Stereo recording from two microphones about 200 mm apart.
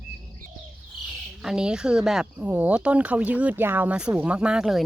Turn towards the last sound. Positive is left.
turn(degrees=0)  # may be behind; listen again after turning